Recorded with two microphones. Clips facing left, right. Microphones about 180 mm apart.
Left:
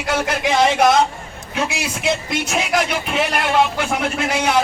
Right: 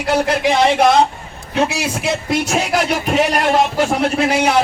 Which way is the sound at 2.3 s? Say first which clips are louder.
Right 3 dB; 40° right (ahead or behind).